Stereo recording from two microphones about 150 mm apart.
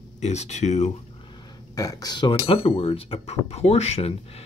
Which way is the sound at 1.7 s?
25° left (ahead or behind).